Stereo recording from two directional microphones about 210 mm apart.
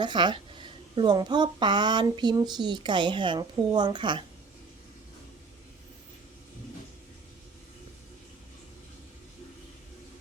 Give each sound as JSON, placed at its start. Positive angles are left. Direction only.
{"t": 0.0, "sound": "speech", "side_deg": -20}